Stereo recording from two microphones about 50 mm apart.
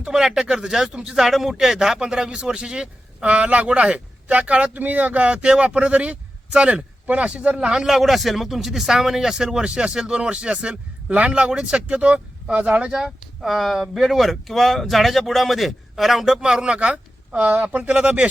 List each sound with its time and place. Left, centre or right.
0.0 s speech: centre
7.6 s speech: centre
7.9 s speech: centre; by 13.0 s right
13.0 s speech: centre; by 17.4 s right
17.4 s speech: right